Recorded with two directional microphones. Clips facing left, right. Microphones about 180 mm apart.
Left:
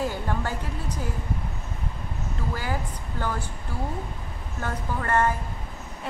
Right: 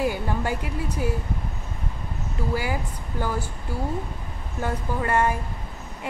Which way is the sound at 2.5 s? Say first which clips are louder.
Right 4 dB; 10° right (ahead or behind).